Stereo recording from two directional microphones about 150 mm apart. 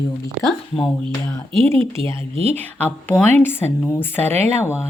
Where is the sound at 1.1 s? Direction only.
15° left (ahead or behind).